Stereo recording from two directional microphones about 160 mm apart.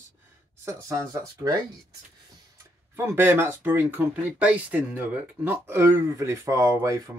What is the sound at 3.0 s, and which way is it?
Speech, 15° right (ahead or behind).